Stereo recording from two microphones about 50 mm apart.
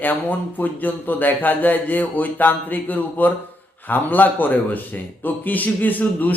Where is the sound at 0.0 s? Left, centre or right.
Left.